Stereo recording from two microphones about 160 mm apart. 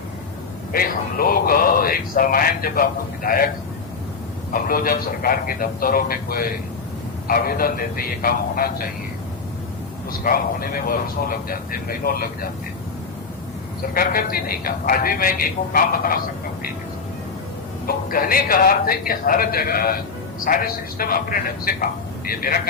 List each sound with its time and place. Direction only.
0.7 s speech: 65° left (ahead or behind)
4.5 s speech: 65° left (ahead or behind)
10.1 s speech: 65° left (ahead or behind)
13.9 s speech: 60° left (ahead or behind)
17.8 s speech: 65° left (ahead or behind)